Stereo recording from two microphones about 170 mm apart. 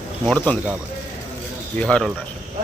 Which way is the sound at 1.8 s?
5° left (ahead or behind).